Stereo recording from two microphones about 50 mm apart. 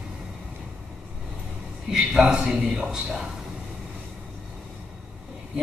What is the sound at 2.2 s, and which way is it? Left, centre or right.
Speech, centre.